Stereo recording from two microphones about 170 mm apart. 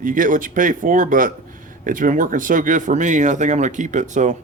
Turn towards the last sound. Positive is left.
turn(degrees=-45)  # may be behind; listen again after turning